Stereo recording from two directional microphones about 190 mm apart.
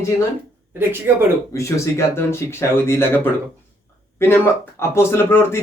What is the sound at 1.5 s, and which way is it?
A man's voice, 15° left (ahead or behind).